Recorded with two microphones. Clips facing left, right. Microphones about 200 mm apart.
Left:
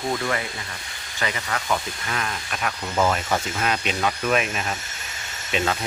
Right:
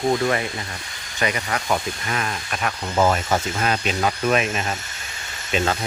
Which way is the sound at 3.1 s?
35° right (ahead or behind).